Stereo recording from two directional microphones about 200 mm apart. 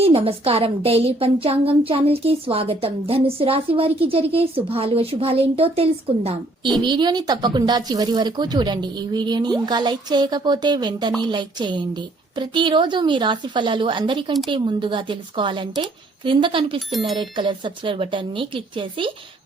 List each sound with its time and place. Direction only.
0.0 s a woman's voice: 30° right (ahead or behind)